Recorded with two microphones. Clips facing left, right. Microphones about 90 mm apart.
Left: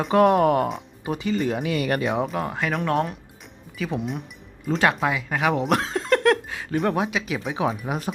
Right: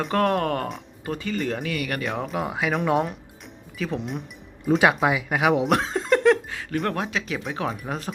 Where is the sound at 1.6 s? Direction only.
25° left (ahead or behind).